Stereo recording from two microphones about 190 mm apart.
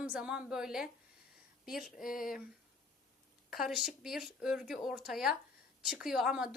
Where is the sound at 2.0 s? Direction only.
45° left (ahead or behind).